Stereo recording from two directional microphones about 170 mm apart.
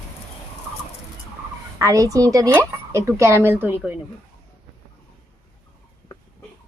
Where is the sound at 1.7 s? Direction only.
20° right (ahead or behind).